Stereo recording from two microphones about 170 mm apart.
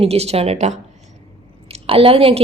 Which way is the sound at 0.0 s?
35° right (ahead or behind).